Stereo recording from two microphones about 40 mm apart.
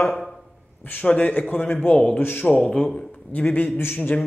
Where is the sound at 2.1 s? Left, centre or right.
Left.